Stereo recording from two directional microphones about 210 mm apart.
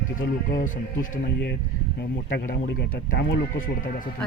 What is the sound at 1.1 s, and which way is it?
Speech, 50° left (ahead or behind).